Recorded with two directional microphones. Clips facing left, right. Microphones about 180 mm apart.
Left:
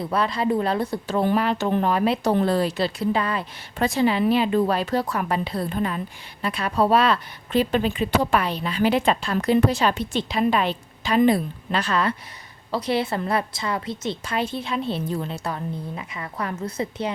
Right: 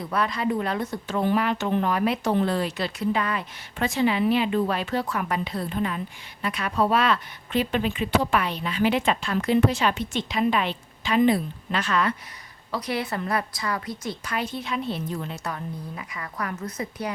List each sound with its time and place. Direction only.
0.0 s a woman's voice: 30° left (ahead or behind)